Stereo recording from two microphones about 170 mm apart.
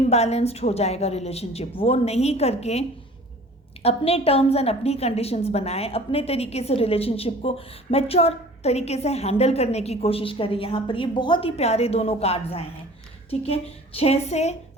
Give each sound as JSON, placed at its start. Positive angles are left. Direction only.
{"t": 0.1, "sound": "a woman's voice", "side_deg": 40}
{"t": 3.8, "sound": "a woman's voice", "side_deg": 35}